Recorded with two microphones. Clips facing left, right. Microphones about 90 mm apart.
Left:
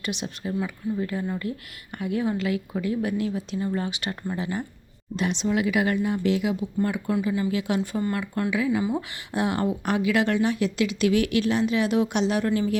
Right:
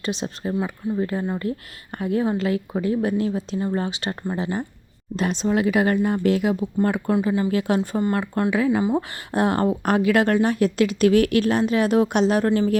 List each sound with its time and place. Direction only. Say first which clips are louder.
0.0 s speech: right 4 dB; 35° right (ahead or behind)